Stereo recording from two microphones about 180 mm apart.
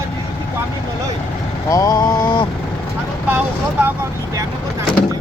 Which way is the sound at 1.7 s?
20° left (ahead or behind).